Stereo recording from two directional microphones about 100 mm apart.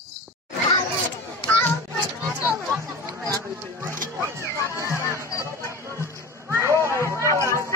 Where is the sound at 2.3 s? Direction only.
25° right (ahead or behind).